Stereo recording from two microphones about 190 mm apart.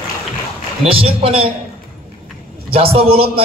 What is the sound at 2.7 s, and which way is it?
Speech, 30° right (ahead or behind).